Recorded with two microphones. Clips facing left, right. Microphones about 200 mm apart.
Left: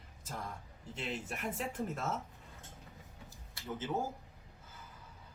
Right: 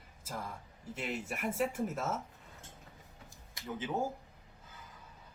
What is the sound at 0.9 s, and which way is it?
Speech, 5° right (ahead or behind).